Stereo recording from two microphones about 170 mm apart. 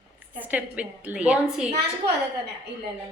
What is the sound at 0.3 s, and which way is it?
A woman's voice, 10° right (ahead or behind).